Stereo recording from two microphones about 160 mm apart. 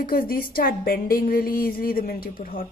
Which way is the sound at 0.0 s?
65° left (ahead or behind).